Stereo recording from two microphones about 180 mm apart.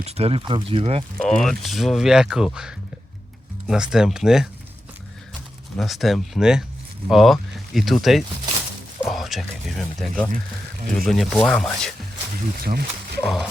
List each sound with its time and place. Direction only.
0.0 s speech: 35° right (ahead or behind)
1.2 s speech: centre (ahead or behind)
5.7 s speech: centre (ahead or behind)
12.6 s speech: 60° right (ahead or behind)
13.2 s speech: centre (ahead or behind)